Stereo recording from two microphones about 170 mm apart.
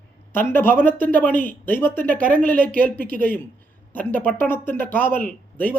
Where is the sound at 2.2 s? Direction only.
55° right (ahead or behind).